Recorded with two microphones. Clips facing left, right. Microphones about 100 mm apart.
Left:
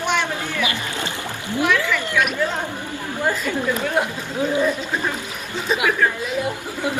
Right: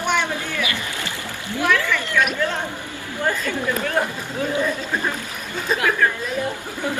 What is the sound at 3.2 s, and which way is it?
Speech, 10° left (ahead or behind).